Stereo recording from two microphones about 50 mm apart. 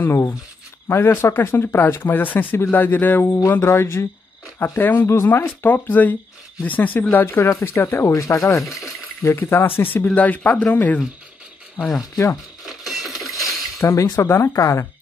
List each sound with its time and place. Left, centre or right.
0.0 s speech: left
3.4 s speech: left
4.6 s speech: left
5.0 s speech: left
5.3 s speech: left
7.6 s speech: left
8.8 s a sound: left
9.4 s speech: left
10.1 s speech: left
12.6 s coin: centre
13.3 s a sound: left
14.3 s speech: left